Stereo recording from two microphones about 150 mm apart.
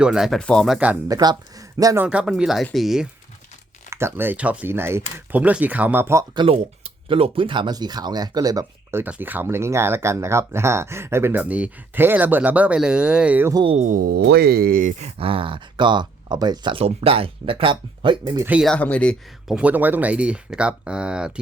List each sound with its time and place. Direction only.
0.0 s speech: 5° right (ahead or behind)
1.0 s speech: 25° right (ahead or behind)
2.0 s speech: 5° right (ahead or behind)
3.8 s speech: 15° right (ahead or behind)
6.3 s speech: 35° right (ahead or behind); by 13.5 s 10° right (ahead or behind)
13.5 s speech: 30° right (ahead or behind)
13.7 s speech: 60° right (ahead or behind)
14.9 s speech: 40° right (ahead or behind)
18.3 s speech: 10° right (ahead or behind)
18.6 s speech: 5° left (ahead or behind)
19.5 s speech: 10° right (ahead or behind)